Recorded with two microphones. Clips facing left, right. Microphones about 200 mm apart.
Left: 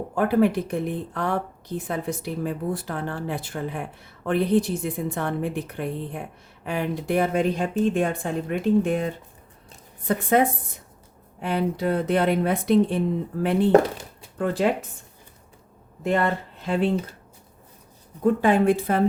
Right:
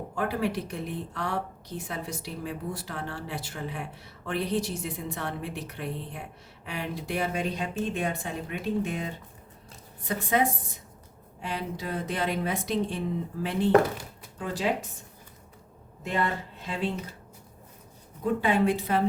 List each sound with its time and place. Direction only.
0.2 s a woman's voice: 55° left (ahead or behind)
16.0 s a woman's voice: 50° left (ahead or behind)
18.2 s a woman's voice: 50° left (ahead or behind)